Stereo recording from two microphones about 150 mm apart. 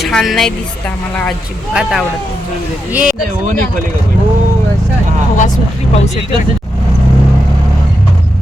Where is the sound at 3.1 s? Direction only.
55° right (ahead or behind).